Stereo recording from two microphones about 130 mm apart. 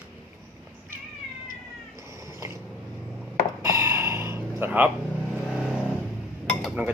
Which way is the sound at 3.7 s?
20° right (ahead or behind).